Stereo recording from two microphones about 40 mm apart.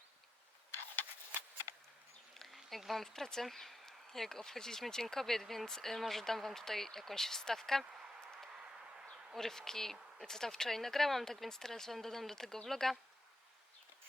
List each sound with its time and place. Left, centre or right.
2.3 s insect: centre
2.6 s speech: centre
3.1 s speech: centre
3.4 s speech: centre